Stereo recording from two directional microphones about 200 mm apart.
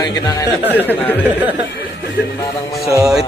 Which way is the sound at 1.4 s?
10° right (ahead or behind).